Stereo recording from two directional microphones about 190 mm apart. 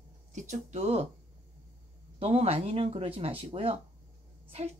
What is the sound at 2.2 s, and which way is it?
Speech, 30° right (ahead or behind).